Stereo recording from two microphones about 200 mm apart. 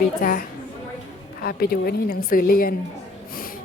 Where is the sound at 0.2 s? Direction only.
45° left (ahead or behind).